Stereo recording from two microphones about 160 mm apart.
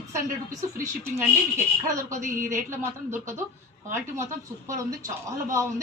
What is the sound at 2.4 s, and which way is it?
A woman's voice, 15° right (ahead or behind).